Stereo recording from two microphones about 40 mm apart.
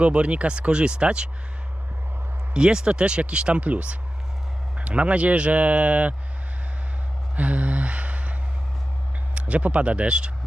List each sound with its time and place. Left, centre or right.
0.0 s speech: right
2.5 s speech: right
7.3 s a sound: right
9.3 s speech: right